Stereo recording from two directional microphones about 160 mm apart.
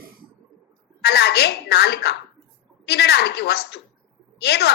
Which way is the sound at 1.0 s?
90° left.